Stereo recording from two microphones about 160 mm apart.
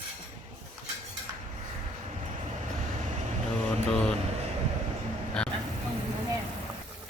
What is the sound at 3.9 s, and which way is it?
Vehicle, 5° left (ahead or behind).